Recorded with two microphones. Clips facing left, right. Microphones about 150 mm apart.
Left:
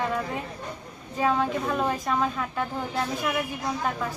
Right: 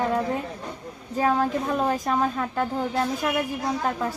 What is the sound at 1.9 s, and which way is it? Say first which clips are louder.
Speech: right 2 dB; 35° right (ahead or behind).